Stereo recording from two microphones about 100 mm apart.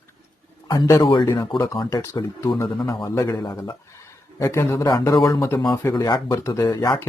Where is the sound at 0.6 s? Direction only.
45° left (ahead or behind).